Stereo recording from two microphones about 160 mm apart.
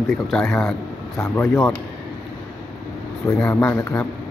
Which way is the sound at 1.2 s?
20° left (ahead or behind).